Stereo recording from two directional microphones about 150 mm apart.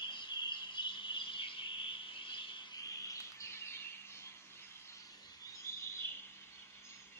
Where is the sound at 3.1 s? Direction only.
20° left (ahead or behind).